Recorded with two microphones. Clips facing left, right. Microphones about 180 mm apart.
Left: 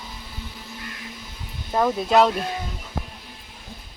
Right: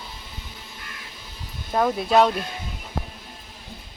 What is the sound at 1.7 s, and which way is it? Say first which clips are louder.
Speech: even; centre (ahead or behind).